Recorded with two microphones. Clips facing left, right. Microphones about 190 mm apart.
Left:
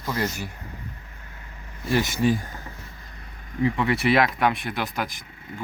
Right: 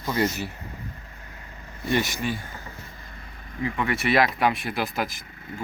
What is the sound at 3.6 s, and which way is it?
Speech, 25° left (ahead or behind).